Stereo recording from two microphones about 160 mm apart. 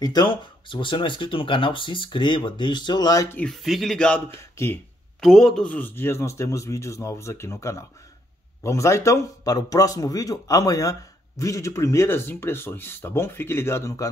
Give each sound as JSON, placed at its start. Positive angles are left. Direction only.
{"t": 0.0, "sound": "speech", "side_deg": 25}
{"t": 3.3, "sound": "speech", "side_deg": 0}
{"t": 4.4, "sound": "speech", "side_deg": 15}
{"t": 5.2, "sound": "a man's voice", "side_deg": 0}